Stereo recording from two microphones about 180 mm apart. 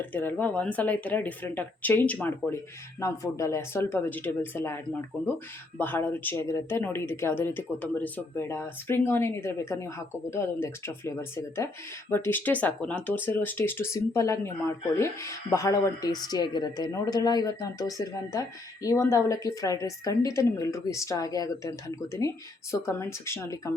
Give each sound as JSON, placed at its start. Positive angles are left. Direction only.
{"t": 0.0, "sound": "speech", "side_deg": 10}